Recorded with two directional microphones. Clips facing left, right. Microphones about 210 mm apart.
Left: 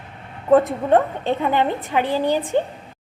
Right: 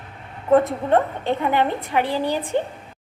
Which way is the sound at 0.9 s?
15° left (ahead or behind).